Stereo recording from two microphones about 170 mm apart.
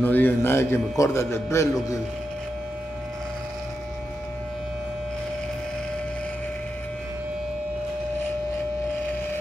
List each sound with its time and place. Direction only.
0.0 s a man's voice: 10° left (ahead or behind)